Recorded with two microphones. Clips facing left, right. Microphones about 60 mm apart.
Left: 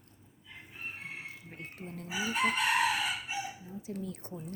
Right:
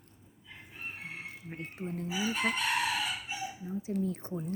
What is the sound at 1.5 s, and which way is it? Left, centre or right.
Speech, right.